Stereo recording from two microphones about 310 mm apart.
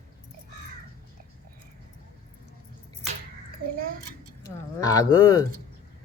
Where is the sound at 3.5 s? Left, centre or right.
Right.